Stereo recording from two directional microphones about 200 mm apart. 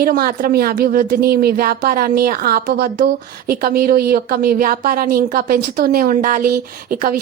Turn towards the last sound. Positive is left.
turn(degrees=-45)  # may be behind; listen again after turning